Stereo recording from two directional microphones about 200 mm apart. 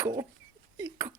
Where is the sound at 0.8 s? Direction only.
15° right (ahead or behind).